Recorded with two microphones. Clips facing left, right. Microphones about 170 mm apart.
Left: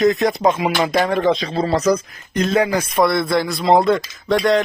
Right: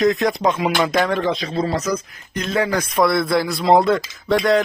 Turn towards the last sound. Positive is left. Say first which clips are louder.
# even
turn(degrees=0)  # may be behind; listen again after turning